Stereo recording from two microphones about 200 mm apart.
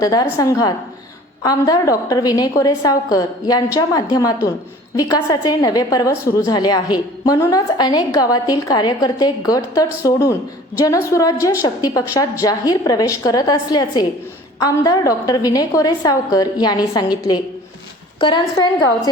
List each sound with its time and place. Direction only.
0.0 s a woman's voice: 20° left (ahead or behind)